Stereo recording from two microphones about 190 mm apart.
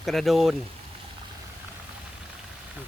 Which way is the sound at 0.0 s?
Centre (ahead or behind).